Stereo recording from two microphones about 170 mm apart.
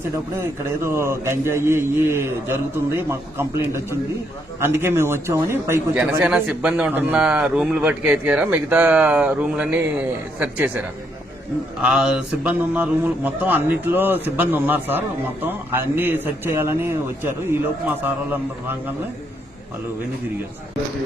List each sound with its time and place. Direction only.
0.3 s a man's voice: 15° right (ahead or behind)